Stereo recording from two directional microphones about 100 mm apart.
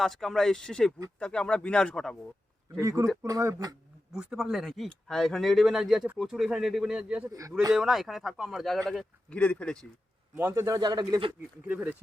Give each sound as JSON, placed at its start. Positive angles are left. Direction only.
{"t": 0.0, "sound": "a man's voice", "side_deg": 0}
{"t": 2.8, "sound": "speech", "side_deg": -30}
{"t": 4.1, "sound": "speech", "side_deg": -5}
{"t": 7.3, "sound": "speech", "side_deg": -35}
{"t": 7.7, "sound": "speech", "side_deg": -5}
{"t": 9.3, "sound": "a man's voice", "side_deg": 15}
{"t": 10.5, "sound": "speech", "side_deg": -35}
{"t": 11.7, "sound": "speech", "side_deg": -15}